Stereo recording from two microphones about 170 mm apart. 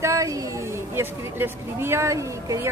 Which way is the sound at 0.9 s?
15° right (ahead or behind).